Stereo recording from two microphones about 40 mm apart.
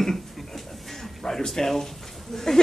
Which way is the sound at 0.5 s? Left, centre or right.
Centre.